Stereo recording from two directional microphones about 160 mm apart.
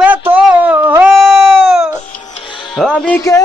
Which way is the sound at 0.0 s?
10° right (ahead or behind).